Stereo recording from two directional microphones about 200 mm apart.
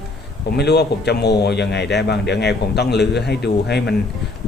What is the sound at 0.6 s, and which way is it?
A man's voice, 55° left (ahead or behind).